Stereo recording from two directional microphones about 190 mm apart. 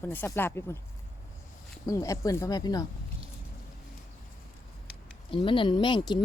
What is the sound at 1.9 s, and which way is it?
Speech, 15° left (ahead or behind).